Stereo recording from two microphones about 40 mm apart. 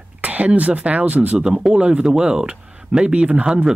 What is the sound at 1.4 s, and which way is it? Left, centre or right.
Speech, centre.